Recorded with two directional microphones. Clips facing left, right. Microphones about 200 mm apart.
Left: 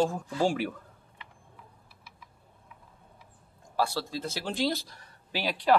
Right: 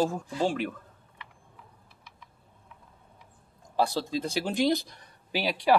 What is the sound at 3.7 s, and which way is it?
Speech, 20° right (ahead or behind).